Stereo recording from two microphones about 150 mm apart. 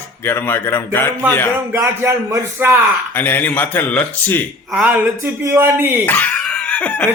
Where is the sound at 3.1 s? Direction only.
10° left (ahead or behind).